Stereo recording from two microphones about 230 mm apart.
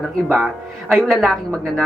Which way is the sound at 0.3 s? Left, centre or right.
Centre.